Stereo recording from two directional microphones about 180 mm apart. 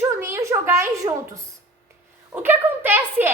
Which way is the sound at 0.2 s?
15° right (ahead or behind).